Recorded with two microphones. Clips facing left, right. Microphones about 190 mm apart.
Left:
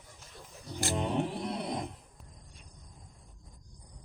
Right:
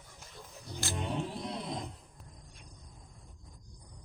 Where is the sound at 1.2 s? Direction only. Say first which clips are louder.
Left 4 dB; 65° left (ahead or behind).